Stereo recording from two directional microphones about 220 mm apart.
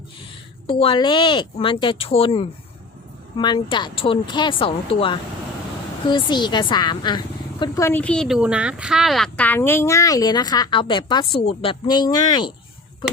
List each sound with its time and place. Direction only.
0.7 s a woman's voice: 25° left (ahead or behind)